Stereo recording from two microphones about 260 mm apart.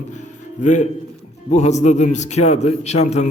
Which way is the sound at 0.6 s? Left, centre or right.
Left.